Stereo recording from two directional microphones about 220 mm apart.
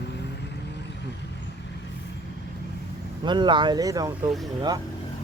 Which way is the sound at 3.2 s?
20° right (ahead or behind).